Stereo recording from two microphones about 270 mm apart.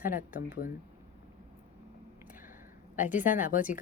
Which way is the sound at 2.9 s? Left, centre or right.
Left.